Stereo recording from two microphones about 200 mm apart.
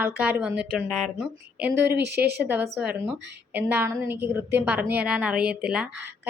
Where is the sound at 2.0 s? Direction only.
55° right (ahead or behind).